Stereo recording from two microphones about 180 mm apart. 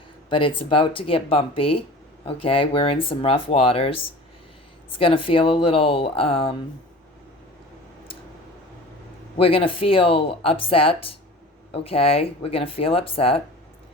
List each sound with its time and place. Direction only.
0.3 s speech: 30° left (ahead or behind)
9.4 s speech: 30° left (ahead or behind)